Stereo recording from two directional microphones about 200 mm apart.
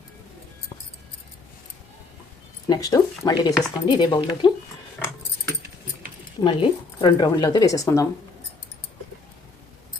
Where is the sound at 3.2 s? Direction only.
20° left (ahead or behind).